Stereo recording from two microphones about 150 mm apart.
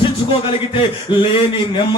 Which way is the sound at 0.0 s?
35° left (ahead or behind).